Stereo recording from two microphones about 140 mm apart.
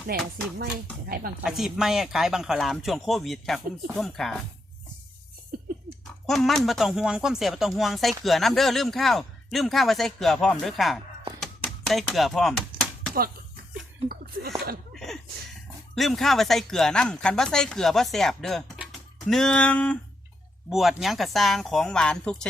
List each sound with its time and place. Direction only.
0.1 s speech: 90° right
1.5 s speech: 5° right (ahead or behind)
6.2 s speech: centre (ahead or behind)
11.3 s typewriter: centre (ahead or behind)
14.9 s a sound: centre (ahead or behind)
16.0 s speech: centre (ahead or behind)